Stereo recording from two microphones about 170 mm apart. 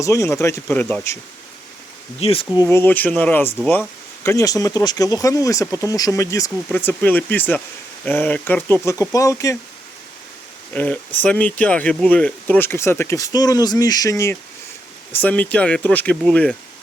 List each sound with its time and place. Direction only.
0.0 s speech: 15° left (ahead or behind)
2.2 s speech: 30° left (ahead or behind)
10.8 s speech: 10° left (ahead or behind)